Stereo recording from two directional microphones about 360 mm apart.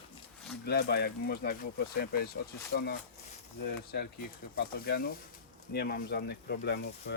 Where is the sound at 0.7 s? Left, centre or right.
Left.